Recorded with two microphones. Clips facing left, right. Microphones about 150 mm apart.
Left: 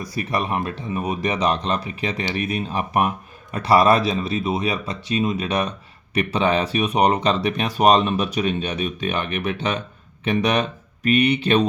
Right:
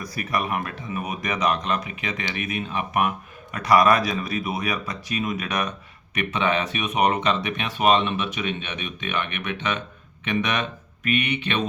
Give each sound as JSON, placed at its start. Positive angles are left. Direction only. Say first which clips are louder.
{"t": 0.0, "sound": "speech", "louder": "left 2 dB", "side_deg": 30}